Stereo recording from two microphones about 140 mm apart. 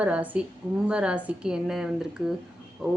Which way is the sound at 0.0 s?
10° right (ahead or behind).